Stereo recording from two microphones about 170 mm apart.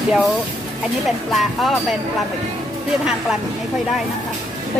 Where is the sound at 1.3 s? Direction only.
Centre (ahead or behind).